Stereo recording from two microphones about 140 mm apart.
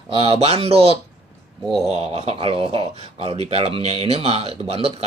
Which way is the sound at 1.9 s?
50° right (ahead or behind).